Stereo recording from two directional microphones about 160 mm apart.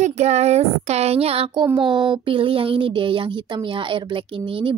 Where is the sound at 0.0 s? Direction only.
45° right (ahead or behind).